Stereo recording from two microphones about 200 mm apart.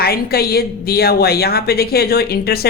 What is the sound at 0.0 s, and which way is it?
A woman's voice, 50° left (ahead or behind).